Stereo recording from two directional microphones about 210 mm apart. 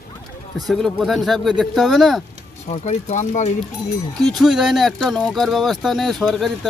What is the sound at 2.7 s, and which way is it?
Speech, 30° left (ahead or behind).